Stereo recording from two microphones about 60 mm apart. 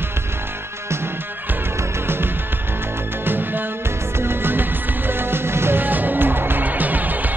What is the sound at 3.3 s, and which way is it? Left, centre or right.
Music, right.